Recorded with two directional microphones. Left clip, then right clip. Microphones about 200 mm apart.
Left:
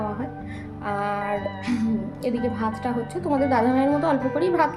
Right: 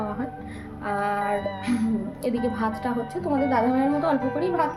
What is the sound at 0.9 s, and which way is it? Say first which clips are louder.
Music: right 1 dB; 5° left (ahead or behind).